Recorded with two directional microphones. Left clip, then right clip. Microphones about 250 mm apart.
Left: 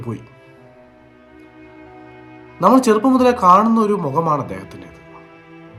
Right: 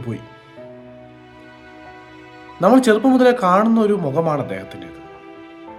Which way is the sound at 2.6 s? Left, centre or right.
Left.